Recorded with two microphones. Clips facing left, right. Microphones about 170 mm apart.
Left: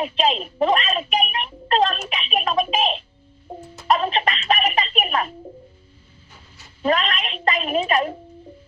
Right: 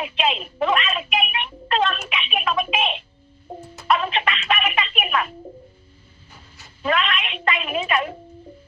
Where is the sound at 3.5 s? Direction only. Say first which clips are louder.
Even; centre (ahead or behind).